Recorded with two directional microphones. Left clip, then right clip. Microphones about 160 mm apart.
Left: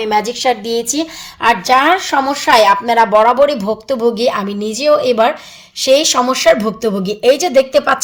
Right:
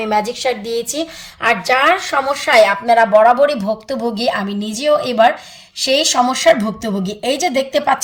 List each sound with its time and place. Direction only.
0.0 s speech: 25° left (ahead or behind)